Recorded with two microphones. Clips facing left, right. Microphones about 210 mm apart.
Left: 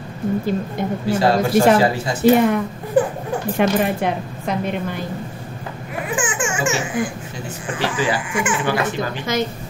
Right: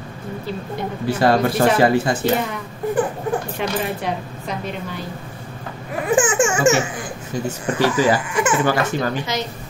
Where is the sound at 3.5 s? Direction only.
55° left (ahead or behind).